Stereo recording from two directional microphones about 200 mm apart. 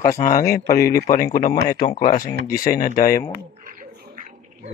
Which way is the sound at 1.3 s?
40° left (ahead or behind).